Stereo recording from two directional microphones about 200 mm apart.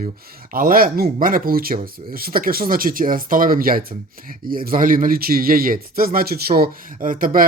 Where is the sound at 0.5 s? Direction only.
45° right (ahead or behind).